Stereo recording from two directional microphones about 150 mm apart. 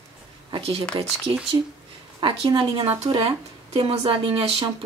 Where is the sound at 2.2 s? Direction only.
35° right (ahead or behind).